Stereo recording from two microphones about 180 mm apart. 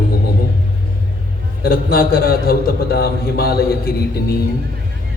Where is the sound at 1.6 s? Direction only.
55° left (ahead or behind).